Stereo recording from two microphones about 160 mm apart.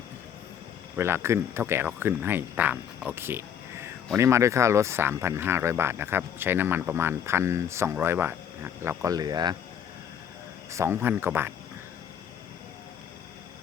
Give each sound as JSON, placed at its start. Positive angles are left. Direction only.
{"t": 0.9, "sound": "speech", "side_deg": -15}
{"t": 10.7, "sound": "speech", "side_deg": -15}